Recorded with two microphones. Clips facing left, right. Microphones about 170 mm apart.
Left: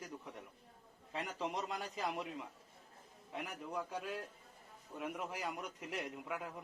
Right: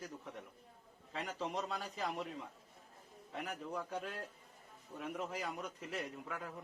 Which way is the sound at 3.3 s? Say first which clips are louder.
Even; 10° left (ahead or behind).